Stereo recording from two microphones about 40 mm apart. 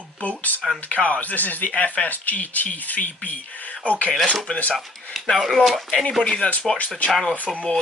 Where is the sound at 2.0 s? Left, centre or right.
Left.